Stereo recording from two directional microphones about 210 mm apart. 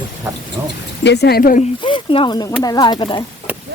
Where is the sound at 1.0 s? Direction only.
50° left (ahead or behind).